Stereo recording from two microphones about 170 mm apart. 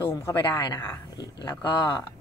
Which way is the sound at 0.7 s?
25° left (ahead or behind).